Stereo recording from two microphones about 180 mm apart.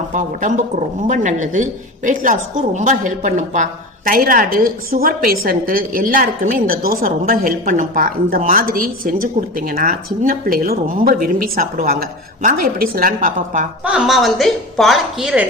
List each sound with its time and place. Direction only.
0.1 s a woman's voice: 45° right (ahead or behind)
13.8 s a woman's voice: 5° right (ahead or behind)